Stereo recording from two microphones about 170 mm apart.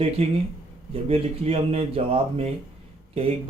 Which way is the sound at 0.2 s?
35° right (ahead or behind).